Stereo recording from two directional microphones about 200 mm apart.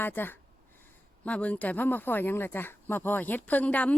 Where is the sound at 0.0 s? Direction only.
10° left (ahead or behind).